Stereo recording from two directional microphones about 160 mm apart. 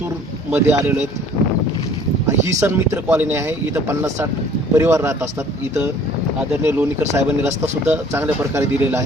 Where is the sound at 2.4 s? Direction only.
15° right (ahead or behind).